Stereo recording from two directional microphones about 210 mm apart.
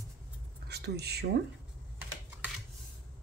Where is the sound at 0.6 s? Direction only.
50° right (ahead or behind).